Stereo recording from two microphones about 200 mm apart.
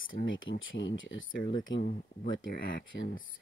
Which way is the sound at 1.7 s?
65° left (ahead or behind).